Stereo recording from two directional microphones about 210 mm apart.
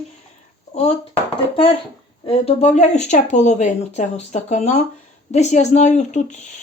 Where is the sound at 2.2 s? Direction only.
25° left (ahead or behind).